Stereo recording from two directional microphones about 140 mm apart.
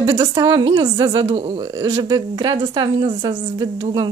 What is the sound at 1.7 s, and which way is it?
A woman's voice, 25° right (ahead or behind).